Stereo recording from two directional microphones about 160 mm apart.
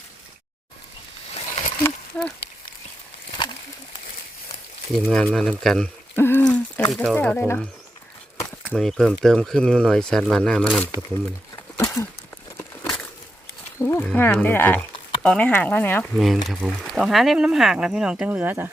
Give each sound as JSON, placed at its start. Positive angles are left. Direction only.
{"t": 1.3, "sound": "a sound", "side_deg": 45}
{"t": 2.1, "sound": "speech", "side_deg": 5}
{"t": 4.9, "sound": "speech", "side_deg": 0}
{"t": 6.1, "sound": "a sound", "side_deg": 15}
{"t": 6.9, "sound": "speech", "side_deg": 0}
{"t": 7.2, "sound": "speech", "side_deg": 10}
{"t": 8.7, "sound": "speech", "side_deg": 0}
{"t": 11.5, "sound": "a sound", "side_deg": 20}
{"t": 12.5, "sound": "crumpling", "side_deg": 10}
{"t": 13.7, "sound": "speech", "side_deg": 15}
{"t": 16.1, "sound": "speech", "side_deg": 0}